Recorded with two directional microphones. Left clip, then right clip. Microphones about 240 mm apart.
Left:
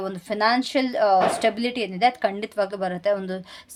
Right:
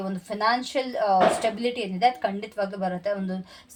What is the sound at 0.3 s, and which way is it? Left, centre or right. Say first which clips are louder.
A woman's voice: left 3 dB; left.